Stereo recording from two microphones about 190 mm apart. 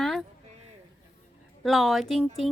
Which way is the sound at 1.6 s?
Centre (ahead or behind).